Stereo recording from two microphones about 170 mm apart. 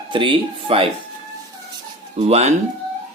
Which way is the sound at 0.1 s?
30° right (ahead or behind).